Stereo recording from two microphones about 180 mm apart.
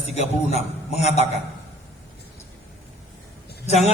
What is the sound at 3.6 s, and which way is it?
Speech, 40° left (ahead or behind).